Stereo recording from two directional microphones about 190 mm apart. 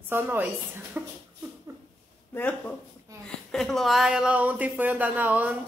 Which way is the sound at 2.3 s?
10° left (ahead or behind).